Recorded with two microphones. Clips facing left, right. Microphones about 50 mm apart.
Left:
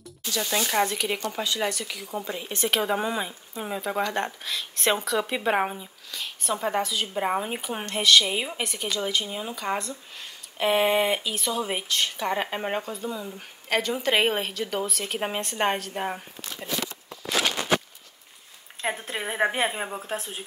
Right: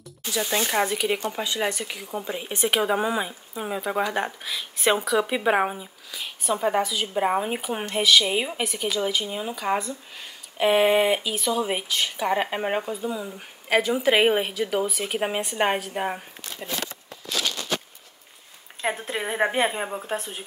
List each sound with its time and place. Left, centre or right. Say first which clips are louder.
0.3 s speech: right 2 dB; centre
1.4 s speech: right 1 dB; right
18.8 s speech: right 2 dB; centre